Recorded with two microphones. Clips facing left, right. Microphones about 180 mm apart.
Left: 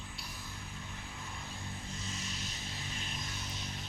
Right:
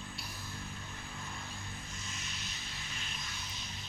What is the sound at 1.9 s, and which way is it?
Music, 35° left (ahead or behind).